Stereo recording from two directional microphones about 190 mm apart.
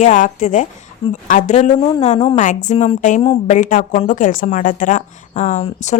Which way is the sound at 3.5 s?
40° left (ahead or behind).